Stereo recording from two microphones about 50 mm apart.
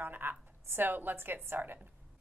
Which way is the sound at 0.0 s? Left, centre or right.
Right.